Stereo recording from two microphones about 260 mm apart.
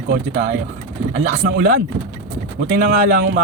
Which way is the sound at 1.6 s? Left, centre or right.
Right.